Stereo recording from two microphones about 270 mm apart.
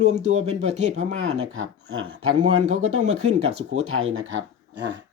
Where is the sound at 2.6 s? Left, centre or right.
Right.